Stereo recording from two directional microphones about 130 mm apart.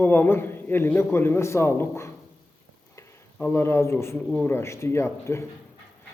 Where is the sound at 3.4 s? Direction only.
20° left (ahead or behind).